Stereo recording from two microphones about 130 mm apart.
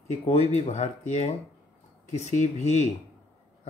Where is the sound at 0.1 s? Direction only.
55° left (ahead or behind).